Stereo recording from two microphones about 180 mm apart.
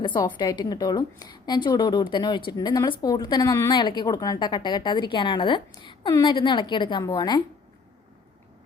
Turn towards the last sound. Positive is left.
turn(degrees=25)  # may be behind; listen again after turning